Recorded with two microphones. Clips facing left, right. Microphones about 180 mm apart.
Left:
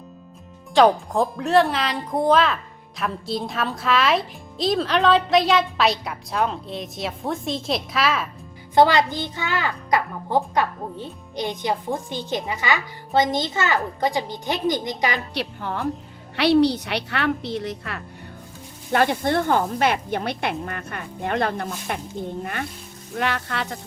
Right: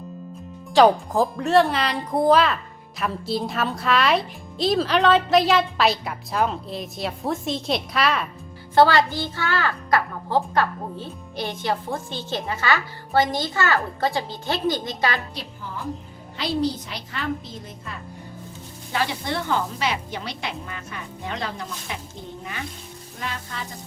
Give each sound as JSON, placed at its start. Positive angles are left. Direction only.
{"t": 0.7, "sound": "speech", "side_deg": 0}
{"t": 8.7, "sound": "a child's voice", "side_deg": 20}
{"t": 15.4, "sound": "a woman's voice", "side_deg": 70}
{"t": 18.9, "sound": "speech", "side_deg": 55}
{"t": 23.1, "sound": "a woman's voice", "side_deg": 70}